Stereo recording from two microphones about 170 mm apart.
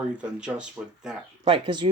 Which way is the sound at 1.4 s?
25° right (ahead or behind).